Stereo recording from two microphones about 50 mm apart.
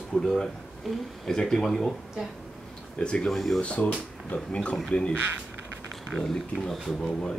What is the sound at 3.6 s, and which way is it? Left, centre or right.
Speech, left.